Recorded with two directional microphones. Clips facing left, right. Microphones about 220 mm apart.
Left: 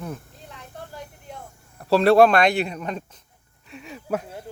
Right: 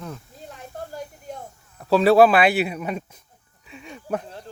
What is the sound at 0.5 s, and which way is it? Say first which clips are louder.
Snake: right 4 dB; 45° right (ahead or behind).